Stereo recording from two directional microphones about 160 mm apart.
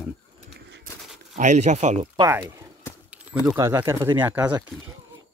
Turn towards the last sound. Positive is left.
turn(degrees=-10)  # may be behind; listen again after turning